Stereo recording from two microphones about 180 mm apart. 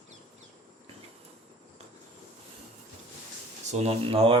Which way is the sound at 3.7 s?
35° right (ahead or behind).